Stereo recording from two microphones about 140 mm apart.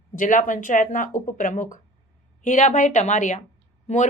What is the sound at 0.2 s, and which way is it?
A woman's voice, 70° left (ahead or behind).